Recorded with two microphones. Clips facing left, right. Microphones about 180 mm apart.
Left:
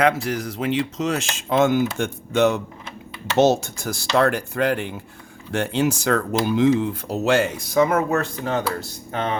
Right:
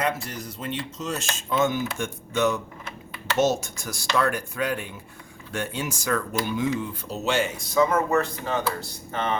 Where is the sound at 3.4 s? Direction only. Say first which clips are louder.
Left 6 dB; 65° left (ahead or behind).